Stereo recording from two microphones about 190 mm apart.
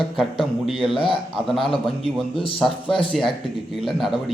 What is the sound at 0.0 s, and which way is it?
Speech, centre (ahead or behind).